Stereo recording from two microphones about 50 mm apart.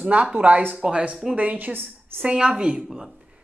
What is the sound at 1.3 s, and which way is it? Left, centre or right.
Speech, right.